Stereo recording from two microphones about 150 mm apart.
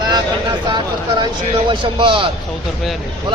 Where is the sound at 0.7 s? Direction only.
30° right (ahead or behind).